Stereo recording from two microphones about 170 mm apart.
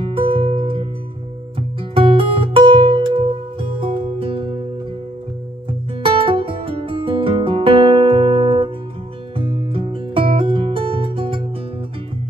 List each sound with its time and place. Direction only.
0.0 s music: 30° right (ahead or behind)
2.0 s music: 30° right (ahead or behind)
6.0 s music: 30° right (ahead or behind)